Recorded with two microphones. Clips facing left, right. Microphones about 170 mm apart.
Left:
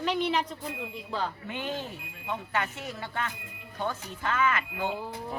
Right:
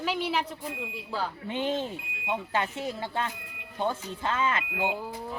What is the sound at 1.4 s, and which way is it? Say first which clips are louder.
Speech: right 5 dB; 25° right (ahead or behind).